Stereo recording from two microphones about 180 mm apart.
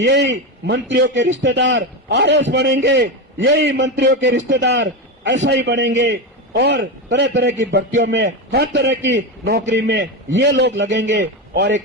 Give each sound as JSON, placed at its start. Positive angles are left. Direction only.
{"t": 0.0, "sound": "a man's voice", "side_deg": -75}
{"t": 8.0, "sound": "a man's voice", "side_deg": -80}